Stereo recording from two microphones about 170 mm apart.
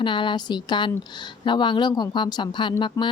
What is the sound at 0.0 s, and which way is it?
Speech, 30° left (ahead or behind).